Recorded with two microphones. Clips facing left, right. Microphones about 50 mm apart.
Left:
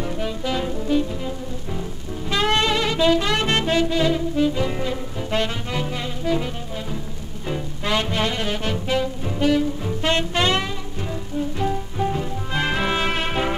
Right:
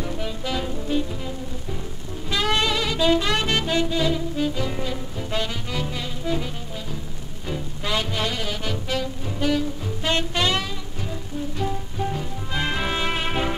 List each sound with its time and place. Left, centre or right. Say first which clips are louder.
0.0 s music: left 3 dB; centre
2.2 s saxophone: left 2 dB; left
3.2 s music: left 2 dB; left; by 13.6 s centre